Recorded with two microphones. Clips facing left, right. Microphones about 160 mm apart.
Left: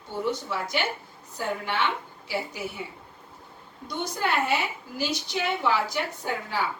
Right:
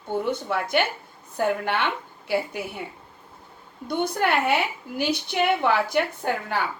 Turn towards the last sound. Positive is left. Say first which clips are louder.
# right 4 dB
turn(degrees=-60)  # may be behind; listen again after turning